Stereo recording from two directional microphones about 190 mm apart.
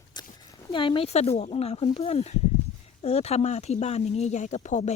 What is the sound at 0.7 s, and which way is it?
Speech, 25° left (ahead or behind).